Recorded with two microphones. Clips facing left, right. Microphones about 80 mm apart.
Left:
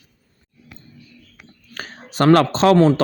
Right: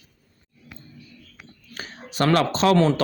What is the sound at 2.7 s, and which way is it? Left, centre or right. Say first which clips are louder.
Speech: left 6 dB; left.